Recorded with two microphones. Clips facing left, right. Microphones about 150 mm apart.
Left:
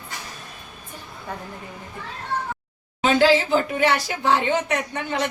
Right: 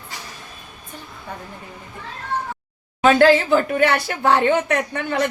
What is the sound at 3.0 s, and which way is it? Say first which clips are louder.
Speech: right 4 dB; 55° right (ahead or behind).